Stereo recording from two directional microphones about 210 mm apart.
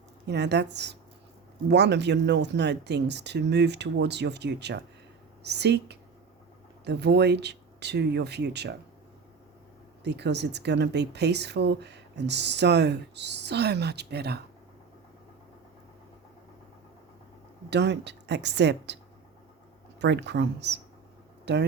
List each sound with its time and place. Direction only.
0.3 s speech: 55° right (ahead or behind)
10.0 s speech: 55° right (ahead or behind)
17.7 s speech: 55° right (ahead or behind)
20.0 s speech: 55° right (ahead or behind)